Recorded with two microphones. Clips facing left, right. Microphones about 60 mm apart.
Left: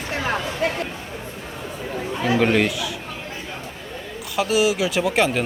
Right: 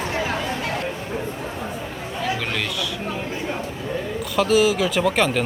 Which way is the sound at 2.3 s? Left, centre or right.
Left.